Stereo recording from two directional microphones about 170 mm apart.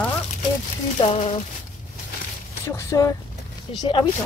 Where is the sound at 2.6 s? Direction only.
15° left (ahead or behind).